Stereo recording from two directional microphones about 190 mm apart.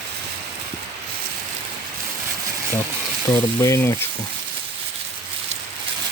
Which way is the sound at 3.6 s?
15° left (ahead or behind).